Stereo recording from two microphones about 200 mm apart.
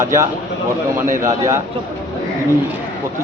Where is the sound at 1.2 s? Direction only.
15° right (ahead or behind).